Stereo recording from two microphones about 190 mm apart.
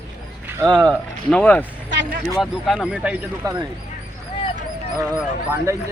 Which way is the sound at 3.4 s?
20° right (ahead or behind).